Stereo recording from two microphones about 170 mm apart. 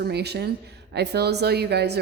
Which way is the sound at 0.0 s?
75° right (ahead or behind).